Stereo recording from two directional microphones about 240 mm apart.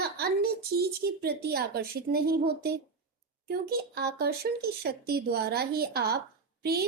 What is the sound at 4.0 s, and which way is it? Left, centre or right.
A woman's voice, right.